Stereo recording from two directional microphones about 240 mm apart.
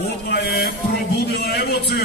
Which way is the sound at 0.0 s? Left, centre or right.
Left.